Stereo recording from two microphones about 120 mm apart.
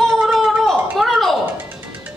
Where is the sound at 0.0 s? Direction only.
Centre (ahead or behind).